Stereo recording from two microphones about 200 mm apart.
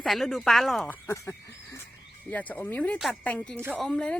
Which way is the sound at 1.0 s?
15° left (ahead or behind).